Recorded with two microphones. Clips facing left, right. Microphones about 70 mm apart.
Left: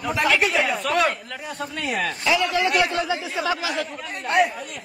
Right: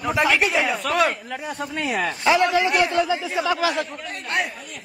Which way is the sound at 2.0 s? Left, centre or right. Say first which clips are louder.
Right 4 dB; right.